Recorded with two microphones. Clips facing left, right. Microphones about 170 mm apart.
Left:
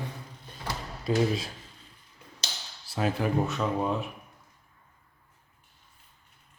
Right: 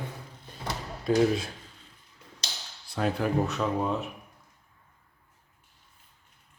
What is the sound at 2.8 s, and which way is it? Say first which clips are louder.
Speech: even; 5° left (ahead or behind).